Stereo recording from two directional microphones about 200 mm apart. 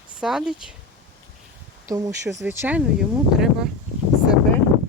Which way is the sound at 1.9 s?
15° right (ahead or behind).